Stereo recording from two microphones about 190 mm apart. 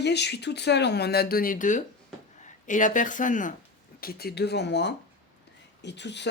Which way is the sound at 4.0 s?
55° left (ahead or behind).